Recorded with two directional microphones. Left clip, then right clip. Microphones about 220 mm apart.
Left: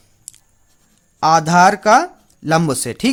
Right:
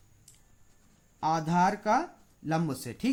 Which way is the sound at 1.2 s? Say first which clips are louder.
Left 15 dB; 40° left (ahead or behind).